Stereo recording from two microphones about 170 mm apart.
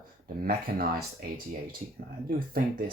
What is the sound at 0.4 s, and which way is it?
Speech, 60° right (ahead or behind).